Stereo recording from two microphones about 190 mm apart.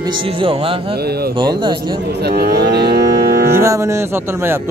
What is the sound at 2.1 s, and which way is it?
Moo, 60° right (ahead or behind).